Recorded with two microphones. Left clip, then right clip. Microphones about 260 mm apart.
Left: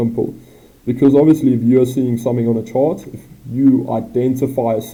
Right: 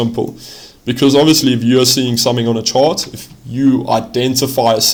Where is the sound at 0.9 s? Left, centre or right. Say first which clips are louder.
Right 1 dB; right.